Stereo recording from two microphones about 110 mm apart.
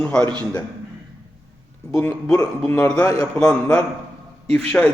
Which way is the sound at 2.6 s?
25° left (ahead or behind).